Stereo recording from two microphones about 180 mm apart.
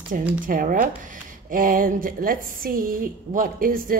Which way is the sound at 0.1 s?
50° right (ahead or behind).